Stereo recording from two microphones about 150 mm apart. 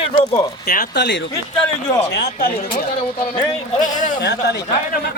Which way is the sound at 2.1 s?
90° left.